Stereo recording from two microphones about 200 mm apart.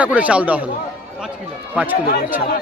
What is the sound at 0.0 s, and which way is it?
Speech, 5° right (ahead or behind).